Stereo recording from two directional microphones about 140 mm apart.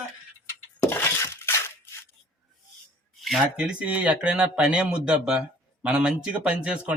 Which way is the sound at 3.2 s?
5° right (ahead or behind).